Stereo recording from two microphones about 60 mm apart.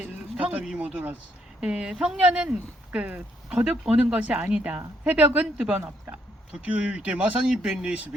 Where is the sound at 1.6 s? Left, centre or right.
Centre.